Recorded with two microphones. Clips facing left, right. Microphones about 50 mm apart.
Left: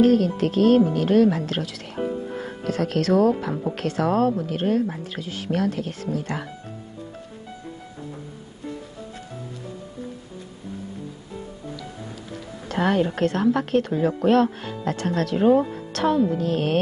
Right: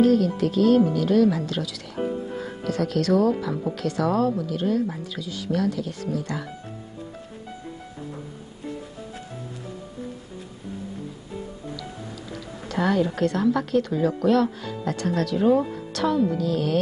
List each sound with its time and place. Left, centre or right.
0.0 s speech: left
12.3 s speech: left